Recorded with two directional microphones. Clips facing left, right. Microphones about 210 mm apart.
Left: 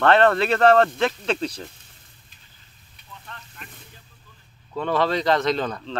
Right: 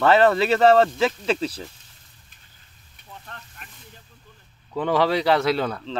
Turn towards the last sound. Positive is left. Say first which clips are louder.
# right 1 dB
turn(degrees=-5)  # may be behind; listen again after turning